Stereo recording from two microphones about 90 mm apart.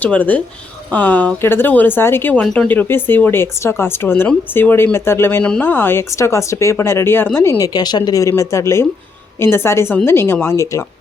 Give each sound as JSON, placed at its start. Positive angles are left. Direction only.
{"t": 0.0, "sound": "speech", "side_deg": 15}
{"t": 2.4, "sound": "speech", "side_deg": 10}
{"t": 2.6, "sound": "speech", "side_deg": 20}
{"t": 5.4, "sound": "speech", "side_deg": 15}
{"t": 7.6, "sound": "speech", "side_deg": 50}